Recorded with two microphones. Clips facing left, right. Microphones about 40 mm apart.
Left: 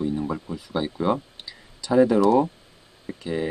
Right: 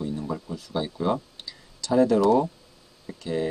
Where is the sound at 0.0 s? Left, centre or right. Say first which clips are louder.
Left 4 dB; centre.